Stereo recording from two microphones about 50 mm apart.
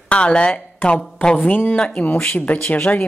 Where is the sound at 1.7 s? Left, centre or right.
Left.